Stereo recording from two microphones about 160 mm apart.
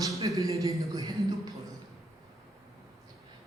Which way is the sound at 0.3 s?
20° right (ahead or behind).